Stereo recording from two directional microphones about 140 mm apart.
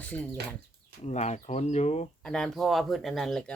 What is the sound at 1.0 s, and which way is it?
Speech, 55° left (ahead or behind).